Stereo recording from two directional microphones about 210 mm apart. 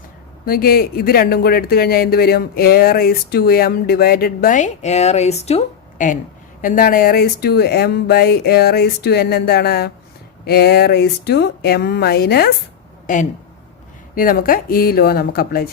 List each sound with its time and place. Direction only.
0.4 s speech: 45° left (ahead or behind)
14.2 s speech: 40° left (ahead or behind)